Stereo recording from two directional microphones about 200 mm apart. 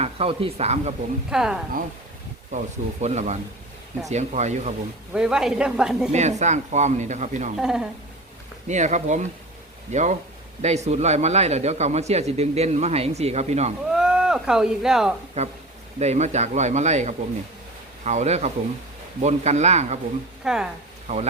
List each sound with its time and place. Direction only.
0.0 s speech: 30° right (ahead or behind)
1.3 s speech: 5° right (ahead or behind)
2.5 s speech: 35° right (ahead or behind)
5.1 s speech: 5° right (ahead or behind)
6.1 s speech: 35° right (ahead or behind)
7.5 s speech: 5° right (ahead or behind)
8.6 s speech: 35° right (ahead or behind)
13.9 s a sound: 5° right (ahead or behind)
15.4 s speech: 35° right (ahead or behind)
20.4 s speech: 5° right (ahead or behind)